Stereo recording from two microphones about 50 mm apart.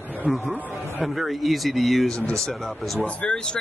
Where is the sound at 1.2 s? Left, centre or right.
Centre.